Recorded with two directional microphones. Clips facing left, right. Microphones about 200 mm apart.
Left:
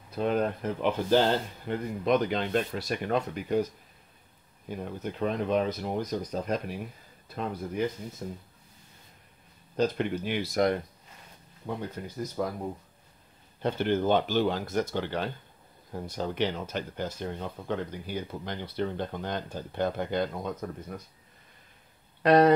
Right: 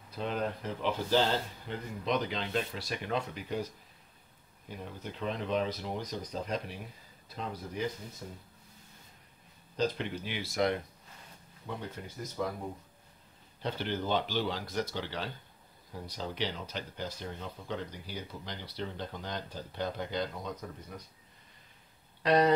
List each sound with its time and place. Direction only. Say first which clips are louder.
0.1 s speech: left 7 dB; 50° left (ahead or behind)
4.6 s speech: left 7 dB; 50° left (ahead or behind)
8.2 s speech: left 8 dB; 50° left (ahead or behind)
9.8 s speech: left 5 dB; 50° left (ahead or behind)
13.6 s speech: left 8 dB; 50° left (ahead or behind)
22.2 s speech: left 6 dB; 55° left (ahead or behind)